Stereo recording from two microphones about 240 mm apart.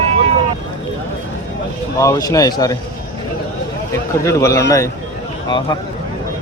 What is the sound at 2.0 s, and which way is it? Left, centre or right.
Speech, centre.